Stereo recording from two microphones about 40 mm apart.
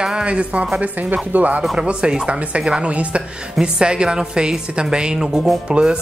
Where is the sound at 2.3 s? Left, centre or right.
Right.